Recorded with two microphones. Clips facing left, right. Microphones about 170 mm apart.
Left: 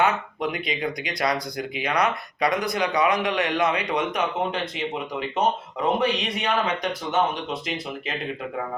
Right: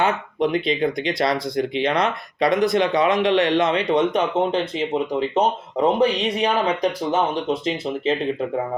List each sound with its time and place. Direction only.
0.0 s speech: 25° right (ahead or behind)